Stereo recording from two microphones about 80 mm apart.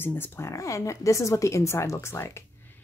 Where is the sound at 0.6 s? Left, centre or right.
Left.